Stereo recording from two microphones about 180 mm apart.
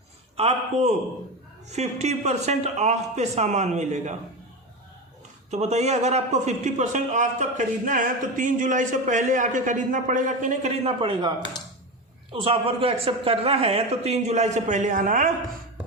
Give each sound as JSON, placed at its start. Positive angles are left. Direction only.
{"t": 0.3, "sound": "a man's voice", "side_deg": -35}
{"t": 5.5, "sound": "a man's voice", "side_deg": -40}